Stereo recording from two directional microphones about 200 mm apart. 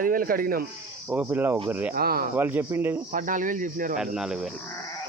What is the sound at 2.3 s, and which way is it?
Speech, 10° right (ahead or behind).